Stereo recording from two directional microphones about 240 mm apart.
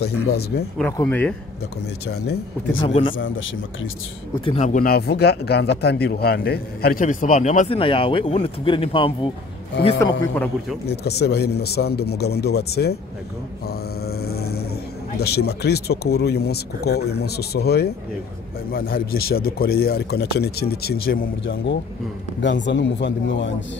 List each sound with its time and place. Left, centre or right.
0.0 s speech: left
0.9 s speech: centre
2.0 s speech: left
2.8 s speech: left
3.2 s speech: left
4.5 s speech: left
9.9 s speech: centre
10.9 s speech: left
22.4 s speech: left